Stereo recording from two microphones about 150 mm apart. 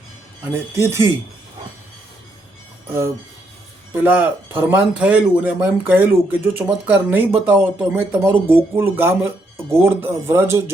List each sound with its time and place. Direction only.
0.4 s speech: 15° right (ahead or behind)
3.9 s speech: 10° right (ahead or behind)